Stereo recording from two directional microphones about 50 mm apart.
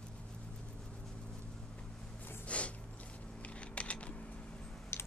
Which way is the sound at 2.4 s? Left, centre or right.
Left.